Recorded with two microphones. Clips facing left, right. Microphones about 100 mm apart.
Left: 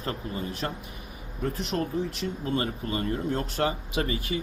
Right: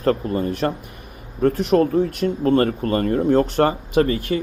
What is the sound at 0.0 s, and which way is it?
Speech, 50° right (ahead or behind).